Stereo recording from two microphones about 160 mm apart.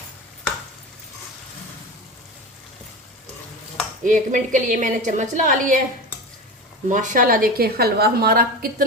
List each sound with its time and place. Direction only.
4.0 s a woman's voice: 50° right (ahead or behind)
6.8 s a woman's voice: 50° right (ahead or behind); by 8.4 s 75° right (ahead or behind)